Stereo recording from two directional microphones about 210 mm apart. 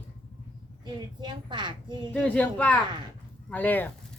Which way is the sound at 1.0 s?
20° right (ahead or behind).